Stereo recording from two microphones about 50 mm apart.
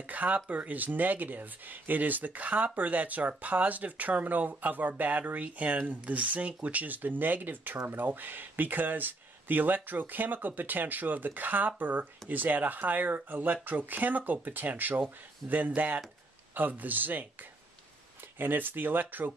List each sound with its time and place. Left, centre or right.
0.0 s speech: right